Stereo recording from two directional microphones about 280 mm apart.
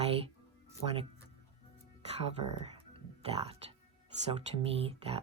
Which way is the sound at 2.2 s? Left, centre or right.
Right.